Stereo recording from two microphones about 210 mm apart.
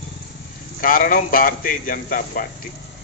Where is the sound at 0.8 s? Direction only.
40° left (ahead or behind).